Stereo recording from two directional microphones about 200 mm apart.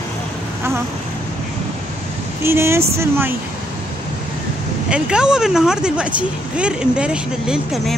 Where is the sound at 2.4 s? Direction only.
15° right (ahead or behind).